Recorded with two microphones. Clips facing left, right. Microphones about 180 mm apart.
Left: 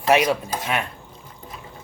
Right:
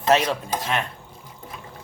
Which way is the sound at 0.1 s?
10° left (ahead or behind).